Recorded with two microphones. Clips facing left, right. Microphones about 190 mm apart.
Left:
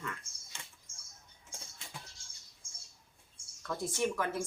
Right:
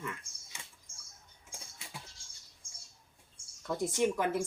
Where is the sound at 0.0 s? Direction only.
10° right (ahead or behind).